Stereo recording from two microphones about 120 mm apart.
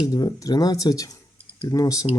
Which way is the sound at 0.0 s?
35° left (ahead or behind).